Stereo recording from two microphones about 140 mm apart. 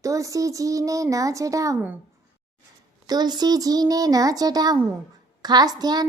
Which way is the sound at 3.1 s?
30° right (ahead or behind).